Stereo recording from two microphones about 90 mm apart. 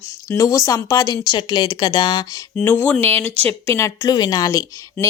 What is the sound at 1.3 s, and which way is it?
Speech, 60° left (ahead or behind).